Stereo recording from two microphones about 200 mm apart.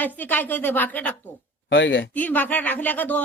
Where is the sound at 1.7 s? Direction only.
65° left (ahead or behind).